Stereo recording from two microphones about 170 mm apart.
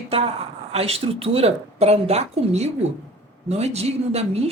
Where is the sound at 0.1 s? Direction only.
35° right (ahead or behind).